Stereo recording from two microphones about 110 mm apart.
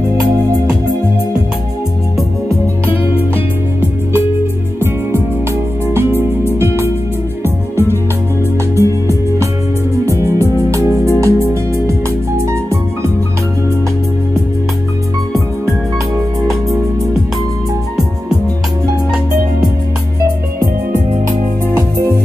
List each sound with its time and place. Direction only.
6.6 s music: 20° right (ahead or behind)
8.7 s music: 30° right (ahead or behind)
21.7 s music: 30° right (ahead or behind)